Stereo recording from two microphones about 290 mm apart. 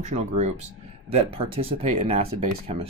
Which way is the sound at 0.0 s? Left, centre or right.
Right.